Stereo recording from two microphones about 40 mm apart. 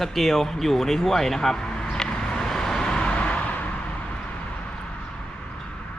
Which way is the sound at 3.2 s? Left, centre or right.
Left.